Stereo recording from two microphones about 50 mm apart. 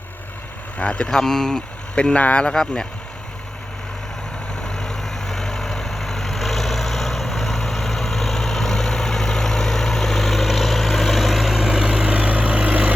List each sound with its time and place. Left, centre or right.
0.8 s speech: left
4.6 s vehicle: centre; by 12.9 s right